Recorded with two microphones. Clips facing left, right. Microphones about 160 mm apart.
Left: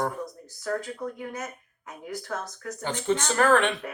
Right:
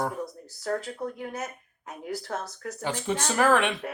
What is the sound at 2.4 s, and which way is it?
Speech, 10° right (ahead or behind).